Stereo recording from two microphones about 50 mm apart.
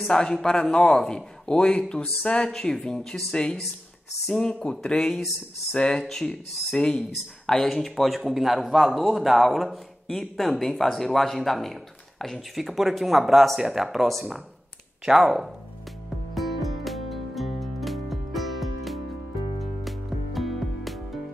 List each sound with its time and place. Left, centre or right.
0.1 s a man's voice: centre
4.9 s a man's voice: centre
16.3 s music: centre